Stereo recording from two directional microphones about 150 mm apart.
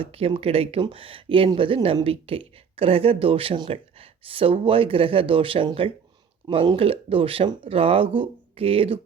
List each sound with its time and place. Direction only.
0.0 s speech: 40° right (ahead or behind)